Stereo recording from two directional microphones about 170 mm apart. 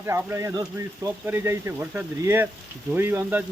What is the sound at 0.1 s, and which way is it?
Speech, 15° right (ahead or behind).